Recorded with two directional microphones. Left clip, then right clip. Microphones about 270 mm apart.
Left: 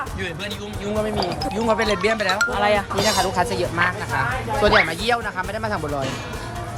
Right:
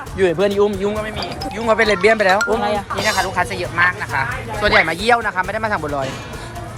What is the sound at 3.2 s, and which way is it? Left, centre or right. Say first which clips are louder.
Speech: right 1 dB; centre.